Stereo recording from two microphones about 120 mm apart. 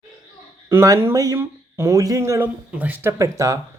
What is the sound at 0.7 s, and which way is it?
Speech, 20° right (ahead or behind).